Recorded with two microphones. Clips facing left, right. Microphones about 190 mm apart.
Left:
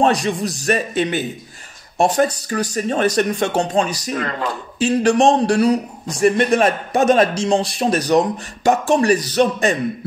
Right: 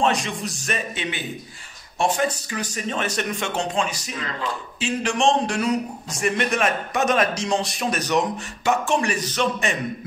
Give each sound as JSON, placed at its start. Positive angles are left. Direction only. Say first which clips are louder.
{"t": 0.0, "sound": "a man's voice", "louder": "left 6 dB", "side_deg": 35}
{"t": 4.2, "sound": "speech", "louder": "left 5 dB", "side_deg": 55}
{"t": 4.7, "sound": "a man's voice", "louder": "left 10 dB", "side_deg": 40}